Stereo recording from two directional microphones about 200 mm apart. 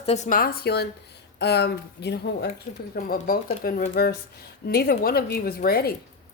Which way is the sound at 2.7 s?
40° left (ahead or behind).